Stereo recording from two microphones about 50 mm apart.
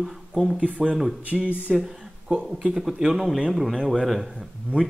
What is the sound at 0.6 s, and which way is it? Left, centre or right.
Speech, right.